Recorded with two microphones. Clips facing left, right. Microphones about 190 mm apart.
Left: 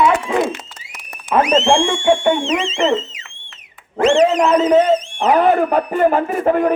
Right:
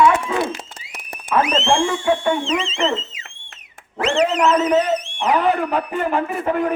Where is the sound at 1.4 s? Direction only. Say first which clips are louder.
Left 4 dB; 30° left (ahead or behind).